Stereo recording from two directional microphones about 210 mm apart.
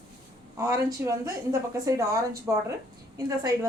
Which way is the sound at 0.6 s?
15° right (ahead or behind).